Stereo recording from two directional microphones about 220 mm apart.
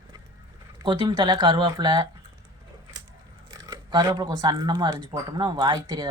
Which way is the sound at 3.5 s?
20° right (ahead or behind).